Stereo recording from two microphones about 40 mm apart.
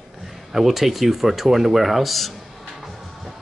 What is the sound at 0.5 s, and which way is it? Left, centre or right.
Speech, centre.